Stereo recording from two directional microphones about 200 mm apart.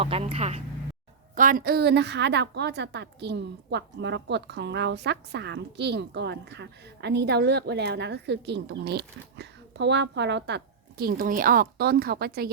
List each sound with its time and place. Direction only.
0.0 s speech: 30° right (ahead or behind)
1.4 s a woman's voice: 45° right (ahead or behind)